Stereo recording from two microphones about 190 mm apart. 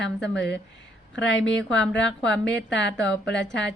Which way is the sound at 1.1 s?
75° left (ahead or behind).